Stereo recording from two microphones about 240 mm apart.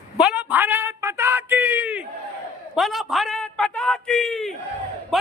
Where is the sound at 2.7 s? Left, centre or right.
Centre.